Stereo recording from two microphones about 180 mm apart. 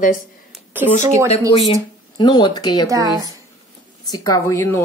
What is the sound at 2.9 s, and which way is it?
Speech, 20° right (ahead or behind).